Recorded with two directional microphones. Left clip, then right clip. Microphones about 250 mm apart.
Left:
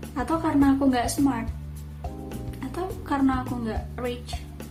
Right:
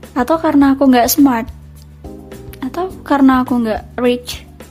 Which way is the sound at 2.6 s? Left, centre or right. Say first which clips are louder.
Right 12 dB; right.